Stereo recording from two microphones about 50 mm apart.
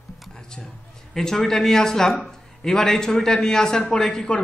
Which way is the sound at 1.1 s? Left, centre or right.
Centre.